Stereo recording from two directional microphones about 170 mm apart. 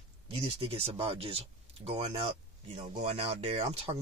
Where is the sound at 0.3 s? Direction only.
35° right (ahead or behind).